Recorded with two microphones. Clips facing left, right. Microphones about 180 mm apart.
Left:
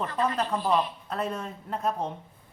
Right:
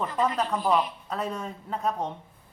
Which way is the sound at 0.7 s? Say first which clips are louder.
Right 1 dB; centre (ahead or behind).